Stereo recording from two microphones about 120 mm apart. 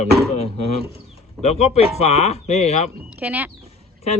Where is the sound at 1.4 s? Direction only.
65° left (ahead or behind).